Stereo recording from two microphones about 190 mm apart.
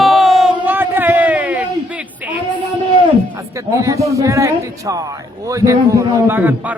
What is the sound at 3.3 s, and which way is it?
Speech, 15° right (ahead or behind).